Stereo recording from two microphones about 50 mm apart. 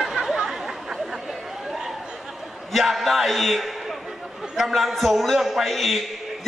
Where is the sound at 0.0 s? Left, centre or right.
Centre.